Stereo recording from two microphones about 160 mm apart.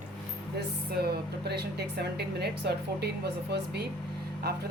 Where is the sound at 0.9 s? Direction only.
80° right.